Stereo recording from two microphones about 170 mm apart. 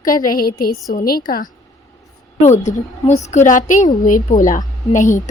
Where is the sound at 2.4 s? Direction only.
45° left (ahead or behind).